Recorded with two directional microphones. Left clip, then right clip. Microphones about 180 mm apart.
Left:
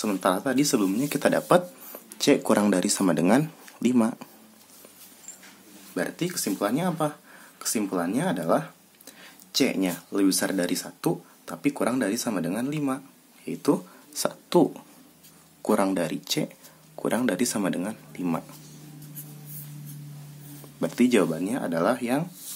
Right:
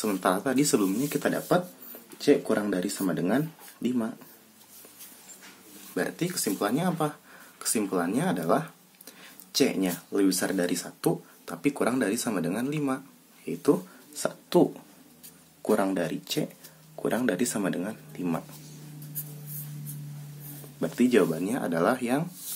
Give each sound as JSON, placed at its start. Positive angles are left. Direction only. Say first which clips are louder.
{"t": 0.0, "sound": "speech", "louder": "left 1 dB", "side_deg": 5}
{"t": 0.9, "sound": "speech", "louder": "left 4 dB", "side_deg": 15}
{"t": 1.5, "sound": "speech", "louder": "left 5 dB", "side_deg": 30}
{"t": 5.9, "sound": "speech", "louder": "left 1 dB", "side_deg": 0}
{"t": 20.8, "sound": "speech", "louder": "left 1 dB", "side_deg": 5}